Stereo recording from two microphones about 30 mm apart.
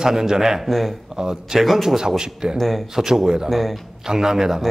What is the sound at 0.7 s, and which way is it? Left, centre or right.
Speech, centre.